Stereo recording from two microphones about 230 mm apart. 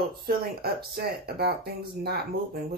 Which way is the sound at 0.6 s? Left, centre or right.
Right.